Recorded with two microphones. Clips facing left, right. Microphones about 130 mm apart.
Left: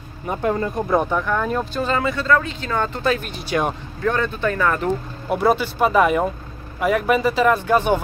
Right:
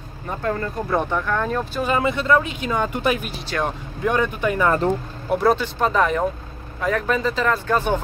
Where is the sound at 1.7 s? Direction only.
15° right (ahead or behind).